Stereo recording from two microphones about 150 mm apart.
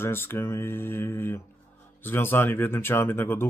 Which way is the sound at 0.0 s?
15° left (ahead or behind).